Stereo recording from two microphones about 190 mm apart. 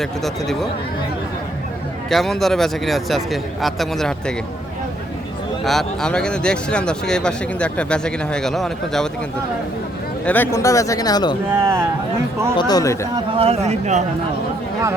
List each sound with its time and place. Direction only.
0.0 s speech: centre (ahead or behind)
2.0 s speech: centre (ahead or behind)
5.6 s speech: centre (ahead or behind)
10.2 s speech: 10° left (ahead or behind)
11.5 s speech: 10° right (ahead or behind)
12.5 s speech: 20° left (ahead or behind)
13.1 s speech: 30° right (ahead or behind)